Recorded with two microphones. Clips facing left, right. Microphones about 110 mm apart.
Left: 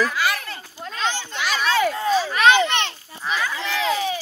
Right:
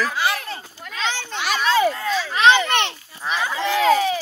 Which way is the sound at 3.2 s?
25° right (ahead or behind).